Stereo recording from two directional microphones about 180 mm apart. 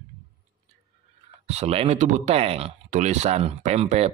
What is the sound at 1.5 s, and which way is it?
Speech, 35° right (ahead or behind).